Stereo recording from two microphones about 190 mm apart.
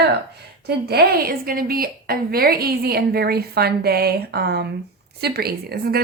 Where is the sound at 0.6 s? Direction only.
55° right (ahead or behind).